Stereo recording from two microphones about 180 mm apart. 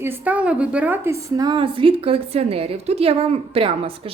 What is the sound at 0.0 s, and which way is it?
A woman's voice, 10° right (ahead or behind).